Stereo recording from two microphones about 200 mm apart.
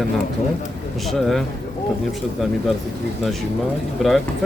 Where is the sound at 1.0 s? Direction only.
Centre (ahead or behind).